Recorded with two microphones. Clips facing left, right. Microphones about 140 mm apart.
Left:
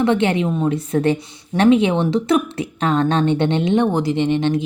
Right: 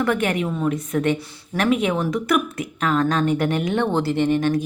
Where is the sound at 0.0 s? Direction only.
25° left (ahead or behind).